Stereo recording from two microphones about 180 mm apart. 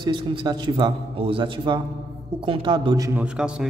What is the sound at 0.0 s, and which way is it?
A man's voice, 25° right (ahead or behind).